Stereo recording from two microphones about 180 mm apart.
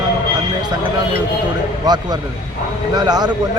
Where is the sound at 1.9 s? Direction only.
20° right (ahead or behind).